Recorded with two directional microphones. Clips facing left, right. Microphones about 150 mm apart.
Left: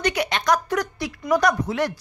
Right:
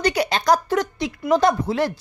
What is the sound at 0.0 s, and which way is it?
Speech, 35° right (ahead or behind).